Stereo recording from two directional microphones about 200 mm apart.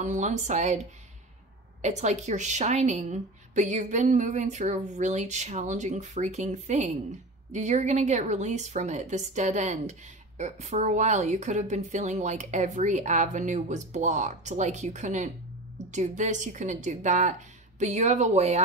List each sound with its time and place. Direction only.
0.0 s a woman's voice: 35° right (ahead or behind)
1.8 s a woman's voice: 35° right (ahead or behind)